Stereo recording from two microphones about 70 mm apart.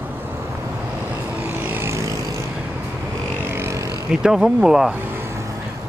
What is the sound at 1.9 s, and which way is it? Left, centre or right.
Vehicle, right.